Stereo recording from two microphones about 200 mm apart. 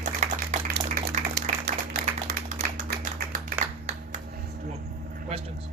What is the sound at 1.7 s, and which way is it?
Tap, 50° right (ahead or behind).